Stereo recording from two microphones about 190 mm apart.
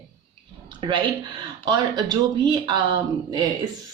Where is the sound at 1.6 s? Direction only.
20° right (ahead or behind).